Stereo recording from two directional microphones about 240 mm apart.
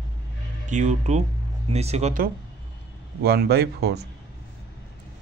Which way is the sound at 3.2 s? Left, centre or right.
Right.